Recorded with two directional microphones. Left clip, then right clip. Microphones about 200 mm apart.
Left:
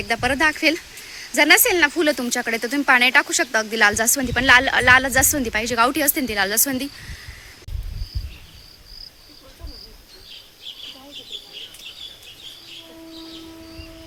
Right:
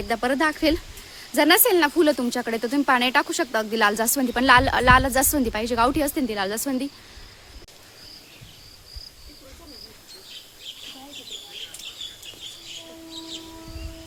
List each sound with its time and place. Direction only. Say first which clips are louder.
0.1 s speech: left 3 dB; 15° right (ahead or behind)